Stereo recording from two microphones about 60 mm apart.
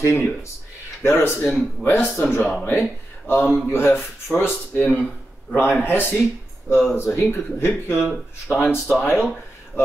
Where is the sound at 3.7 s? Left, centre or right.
Left.